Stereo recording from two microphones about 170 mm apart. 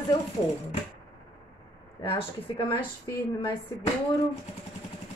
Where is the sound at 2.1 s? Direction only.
30° left (ahead or behind).